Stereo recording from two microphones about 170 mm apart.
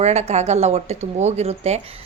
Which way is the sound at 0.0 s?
40° right (ahead or behind).